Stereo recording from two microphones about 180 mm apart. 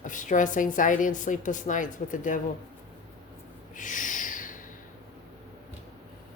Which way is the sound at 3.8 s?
45° left (ahead or behind).